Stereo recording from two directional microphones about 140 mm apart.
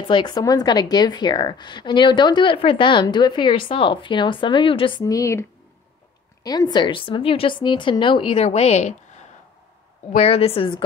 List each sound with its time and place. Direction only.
0.1 s speech: 30° left (ahead or behind)
5.0 s a woman's voice: 25° left (ahead or behind); by 10.8 s 40° left (ahead or behind)